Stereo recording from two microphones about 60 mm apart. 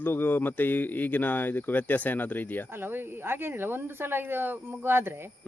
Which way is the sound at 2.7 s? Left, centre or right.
Right.